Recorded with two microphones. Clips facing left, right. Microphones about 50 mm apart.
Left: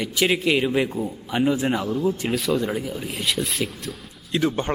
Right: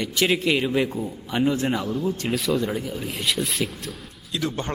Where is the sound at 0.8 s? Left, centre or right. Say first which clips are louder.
Left 1 dB; left.